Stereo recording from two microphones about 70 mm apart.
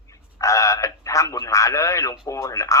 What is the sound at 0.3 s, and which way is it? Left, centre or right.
Radio, left.